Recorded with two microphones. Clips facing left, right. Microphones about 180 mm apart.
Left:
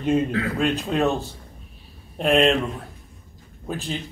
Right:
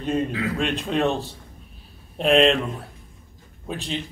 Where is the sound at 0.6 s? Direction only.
Centre (ahead or behind).